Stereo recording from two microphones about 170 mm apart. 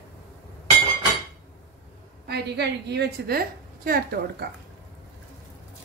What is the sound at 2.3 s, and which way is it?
A woman's voice, 80° right.